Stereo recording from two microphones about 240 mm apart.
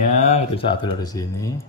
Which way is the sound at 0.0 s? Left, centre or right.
Left.